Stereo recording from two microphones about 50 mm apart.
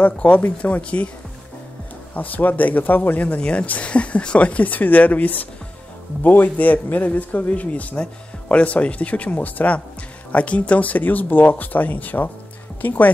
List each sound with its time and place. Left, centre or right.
0.0 s a man's voice: left
2.1 s a man's voice: left